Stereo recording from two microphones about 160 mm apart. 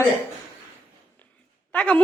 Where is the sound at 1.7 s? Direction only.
10° left (ahead or behind).